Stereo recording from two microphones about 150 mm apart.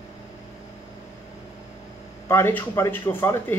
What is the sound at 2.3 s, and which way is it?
Speech, 15° left (ahead or behind).